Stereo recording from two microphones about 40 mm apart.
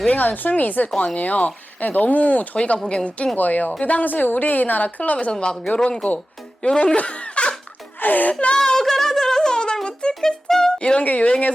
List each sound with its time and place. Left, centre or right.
0.2 s a woman's voice: left
0.9 s speech: centre
1.2 s speech: left
2.7 s speech: centre
3.3 s a woman's voice: left
5.3 s a man's voice: left
6.9 s laughter: left
8.0 s speech: left
8.3 s speech: left
8.5 s a sound: centre
9.8 s music: left
10.8 s music: left
11.0 s a woman's voice: left